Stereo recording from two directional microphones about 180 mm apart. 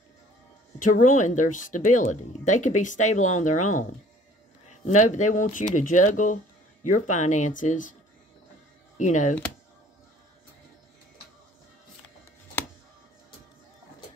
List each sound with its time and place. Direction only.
0.7 s speech: 45° left (ahead or behind)
4.8 s speech: 45° left (ahead or behind)
8.9 s speech: 40° left (ahead or behind)